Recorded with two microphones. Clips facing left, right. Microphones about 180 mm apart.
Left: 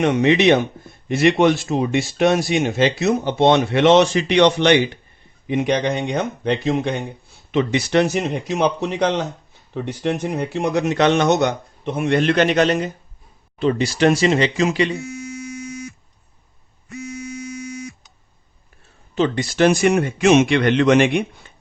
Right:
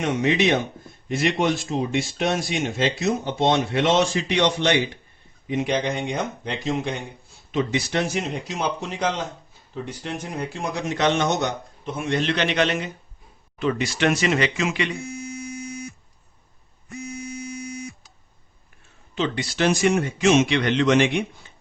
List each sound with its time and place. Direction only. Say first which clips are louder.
0.0 s speech: left 6 dB; 70° left (ahead or behind); by 14.9 s 35° left (ahead or behind)
19.1 s speech: left 6 dB; 45° left (ahead or behind)